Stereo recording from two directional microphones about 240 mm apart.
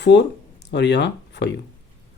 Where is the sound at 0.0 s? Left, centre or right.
Left.